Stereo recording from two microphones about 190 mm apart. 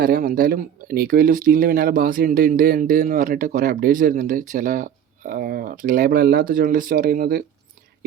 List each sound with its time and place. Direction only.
0.0 s speech: 50° right (ahead or behind)